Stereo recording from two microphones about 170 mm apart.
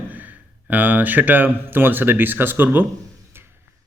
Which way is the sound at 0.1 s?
10° right (ahead or behind).